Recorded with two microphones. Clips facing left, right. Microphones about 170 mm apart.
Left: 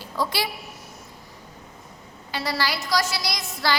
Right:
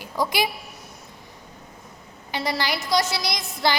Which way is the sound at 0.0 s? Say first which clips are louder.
Right 2 dB; 15° right (ahead or behind).